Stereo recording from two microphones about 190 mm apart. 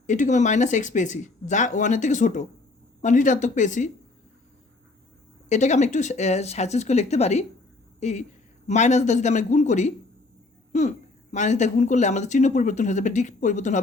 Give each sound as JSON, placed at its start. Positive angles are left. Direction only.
{"t": 0.1, "sound": "speech", "side_deg": 40}
{"t": 5.5, "sound": "speech", "side_deg": 40}